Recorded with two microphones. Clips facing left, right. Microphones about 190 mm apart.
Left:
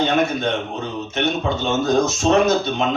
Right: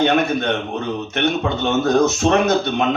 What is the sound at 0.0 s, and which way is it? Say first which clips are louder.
A man's voice: right 2 dB; 65° right (ahead or behind).